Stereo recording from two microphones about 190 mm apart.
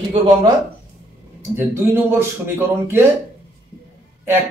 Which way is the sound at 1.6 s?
10° right (ahead or behind).